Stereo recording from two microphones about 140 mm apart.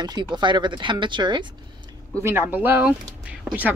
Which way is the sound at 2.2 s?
15° right (ahead or behind).